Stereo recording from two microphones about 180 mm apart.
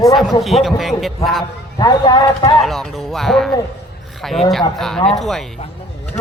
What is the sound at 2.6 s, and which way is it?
A man's voice, centre (ahead or behind).